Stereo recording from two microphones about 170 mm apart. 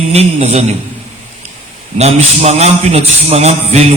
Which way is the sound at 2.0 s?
40° right (ahead or behind).